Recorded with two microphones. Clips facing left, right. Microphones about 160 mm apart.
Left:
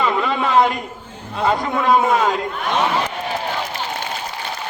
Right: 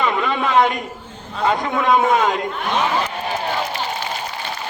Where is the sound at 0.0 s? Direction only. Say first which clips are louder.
Left 1 dB; centre (ahead or behind).